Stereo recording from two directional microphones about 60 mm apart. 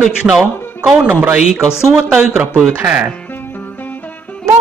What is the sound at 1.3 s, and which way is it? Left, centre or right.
Speech, centre.